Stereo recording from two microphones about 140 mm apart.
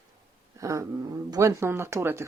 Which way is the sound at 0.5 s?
20° right (ahead or behind).